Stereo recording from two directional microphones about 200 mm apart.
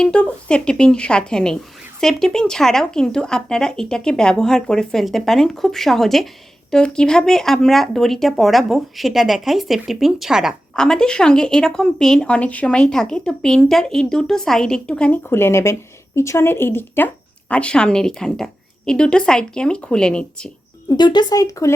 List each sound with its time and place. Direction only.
0.0 s speech: 5° left (ahead or behind)
20.9 s speech: 20° left (ahead or behind)